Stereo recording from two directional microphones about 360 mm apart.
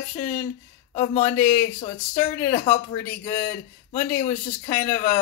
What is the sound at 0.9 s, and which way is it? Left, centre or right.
Speech, centre.